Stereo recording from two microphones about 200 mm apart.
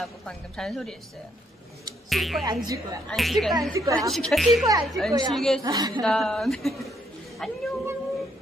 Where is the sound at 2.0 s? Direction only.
Centre (ahead or behind).